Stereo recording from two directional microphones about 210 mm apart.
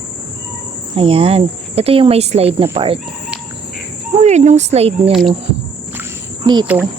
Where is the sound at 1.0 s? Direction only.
25° right (ahead or behind).